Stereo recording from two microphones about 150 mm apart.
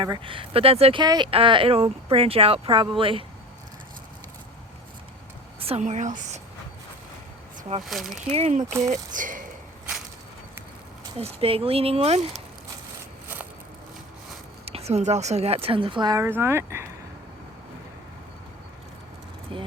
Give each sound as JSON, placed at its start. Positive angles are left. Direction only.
{"t": 0.0, "sound": "speech", "side_deg": -30}
{"t": 1.0, "sound": "speech", "side_deg": -25}
{"t": 1.3, "sound": "speech", "side_deg": -35}
{"t": 5.5, "sound": "a sound", "side_deg": -40}
{"t": 5.8, "sound": "speech", "side_deg": -55}
{"t": 7.9, "sound": "speech", "side_deg": 0}
{"t": 8.3, "sound": "speech", "side_deg": -45}
{"t": 8.9, "sound": "speech", "side_deg": -60}
{"t": 11.2, "sound": "speech", "side_deg": -40}
{"t": 14.6, "sound": "speech", "side_deg": -45}
{"t": 16.2, "sound": "speech", "side_deg": -15}
{"t": 19.5, "sound": "a sound", "side_deg": -35}